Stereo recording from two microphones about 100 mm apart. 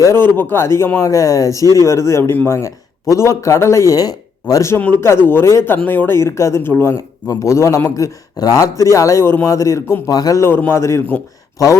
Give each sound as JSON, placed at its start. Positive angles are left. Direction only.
{"t": 0.0, "sound": "speech", "side_deg": 25}
{"t": 4.8, "sound": "a man's voice", "side_deg": 20}
{"t": 10.4, "sound": "speech", "side_deg": 20}